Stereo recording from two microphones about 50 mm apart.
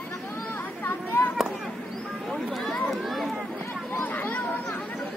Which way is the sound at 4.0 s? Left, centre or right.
Left.